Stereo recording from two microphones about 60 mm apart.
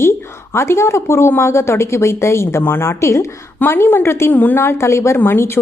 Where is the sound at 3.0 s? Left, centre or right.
Left.